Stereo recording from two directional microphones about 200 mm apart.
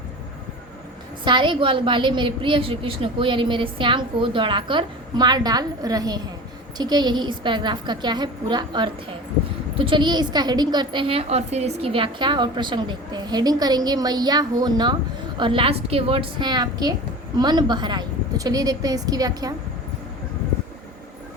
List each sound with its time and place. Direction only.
1.2 s a woman's voice: 25° right (ahead or behind)